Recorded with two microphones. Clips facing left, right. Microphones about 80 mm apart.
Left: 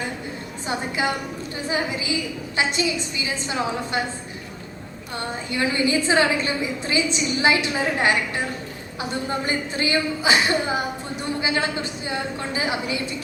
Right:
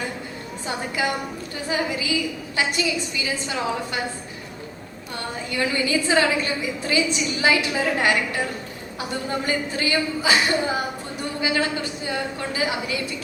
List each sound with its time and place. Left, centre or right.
0.7 s a woman's voice: left
5.1 s a woman's voice: left